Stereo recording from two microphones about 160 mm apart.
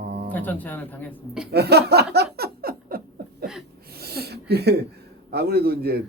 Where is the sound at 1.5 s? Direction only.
85° right.